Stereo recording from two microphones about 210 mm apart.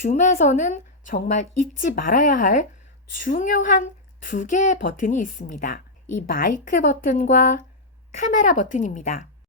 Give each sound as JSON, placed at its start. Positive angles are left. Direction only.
{"t": 0.0, "sound": "a woman's voice", "side_deg": 35}